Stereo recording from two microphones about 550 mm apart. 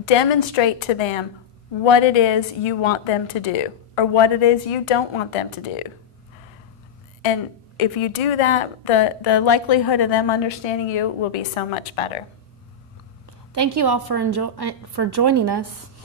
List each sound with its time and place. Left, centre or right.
0.0 s speech: left
7.8 s a woman's voice: left
9.0 s a woman's voice: left
10.6 s a woman's voice: left
13.5 s a woman's voice: right